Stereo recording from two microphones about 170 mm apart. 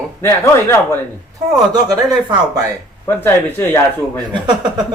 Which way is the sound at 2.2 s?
20° right (ahead or behind).